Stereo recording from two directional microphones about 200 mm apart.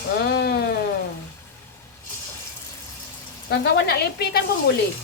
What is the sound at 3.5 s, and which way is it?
Speech, 55° left (ahead or behind).